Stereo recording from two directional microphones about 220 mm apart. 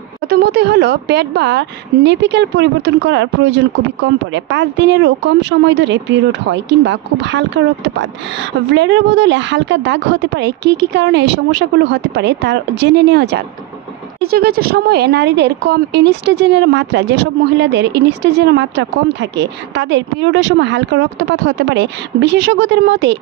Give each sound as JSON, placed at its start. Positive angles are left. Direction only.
{"t": 0.3, "sound": "a woman's voice", "side_deg": -45}